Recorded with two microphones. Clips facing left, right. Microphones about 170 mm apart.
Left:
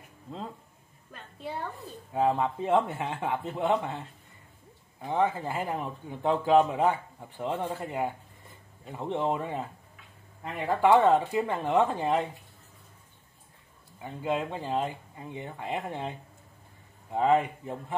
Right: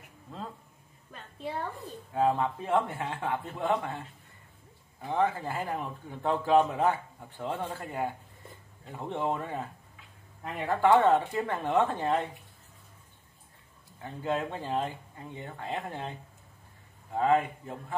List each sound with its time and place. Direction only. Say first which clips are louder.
2.1 s speech: left 1 dB; 15° left (ahead or behind)
5.0 s speech: left 1 dB; 20° left (ahead or behind)
14.0 s speech: left 1 dB; 10° left (ahead or behind)
17.1 s speech: left 1 dB; 20° left (ahead or behind)